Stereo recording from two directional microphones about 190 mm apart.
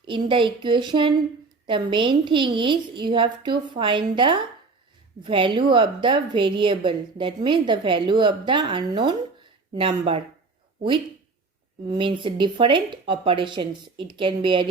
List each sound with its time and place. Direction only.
0.0 s a woman's voice: 25° right (ahead or behind)
11.9 s a woman's voice: 25° right (ahead or behind)